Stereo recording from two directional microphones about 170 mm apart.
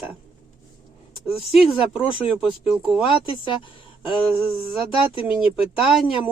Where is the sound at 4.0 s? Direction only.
30° left (ahead or behind).